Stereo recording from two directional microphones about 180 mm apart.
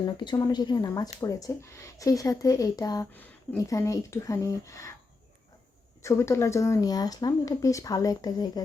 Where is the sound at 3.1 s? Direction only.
10° left (ahead or behind).